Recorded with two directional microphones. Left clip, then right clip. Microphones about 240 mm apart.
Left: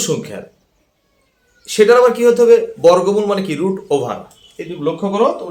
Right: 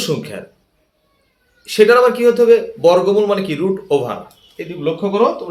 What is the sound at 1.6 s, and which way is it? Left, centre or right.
A man's voice, centre.